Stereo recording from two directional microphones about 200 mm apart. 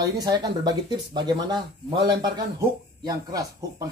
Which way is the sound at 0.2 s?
20° right (ahead or behind).